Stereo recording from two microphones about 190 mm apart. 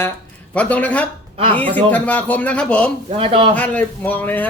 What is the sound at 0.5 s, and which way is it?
Speech, 5° left (ahead or behind).